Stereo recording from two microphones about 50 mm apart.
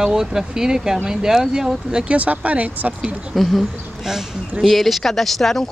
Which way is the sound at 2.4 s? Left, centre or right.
Right.